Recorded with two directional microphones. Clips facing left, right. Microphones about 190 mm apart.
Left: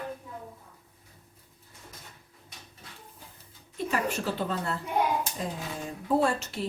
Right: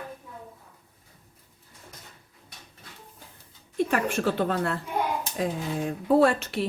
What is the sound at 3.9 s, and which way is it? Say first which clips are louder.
Speech: right 2 dB; 55° right (ahead or behind).